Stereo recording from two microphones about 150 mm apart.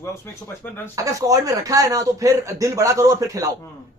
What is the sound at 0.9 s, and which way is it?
Speech, 25° right (ahead or behind).